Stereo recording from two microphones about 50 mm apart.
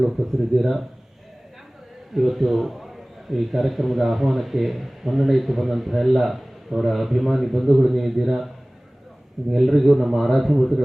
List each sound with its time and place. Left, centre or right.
0.0 s a man's voice: centre
2.1 s a man's voice: centre
9.5 s a man's voice: centre